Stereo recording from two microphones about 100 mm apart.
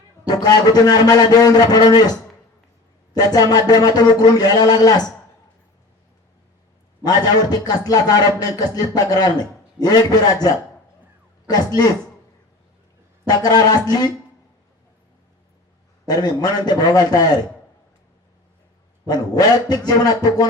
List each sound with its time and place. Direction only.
0.3 s a man's voice: 40° left (ahead or behind)
7.0 s a man's voice: 40° left (ahead or behind)
13.2 s a man's voice: 40° left (ahead or behind)
16.0 s a man's voice: 40° left (ahead or behind)
19.0 s speech: 40° left (ahead or behind)